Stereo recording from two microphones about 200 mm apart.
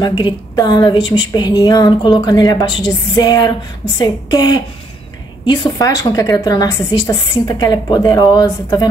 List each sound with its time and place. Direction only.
0.0 s a woman's voice: 20° left (ahead or behind)